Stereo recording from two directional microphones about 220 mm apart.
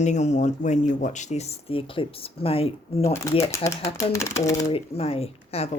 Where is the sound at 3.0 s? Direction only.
15° left (ahead or behind).